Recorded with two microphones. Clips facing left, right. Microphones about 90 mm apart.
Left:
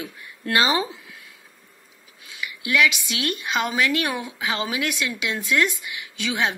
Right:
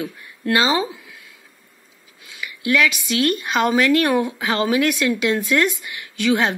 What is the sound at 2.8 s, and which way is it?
A woman's voice, 40° right (ahead or behind).